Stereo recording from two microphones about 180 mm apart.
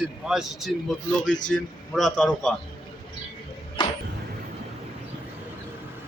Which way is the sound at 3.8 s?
25° left (ahead or behind).